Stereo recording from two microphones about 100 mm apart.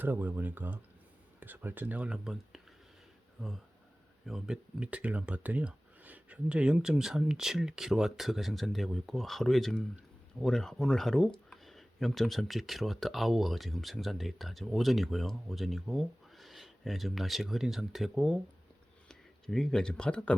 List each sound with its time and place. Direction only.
0.0 s speech: 15° right (ahead or behind)
19.0 s speech: 5° left (ahead or behind)